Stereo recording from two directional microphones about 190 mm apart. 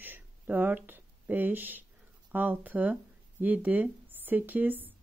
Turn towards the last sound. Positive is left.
turn(degrees=-10)  # may be behind; listen again after turning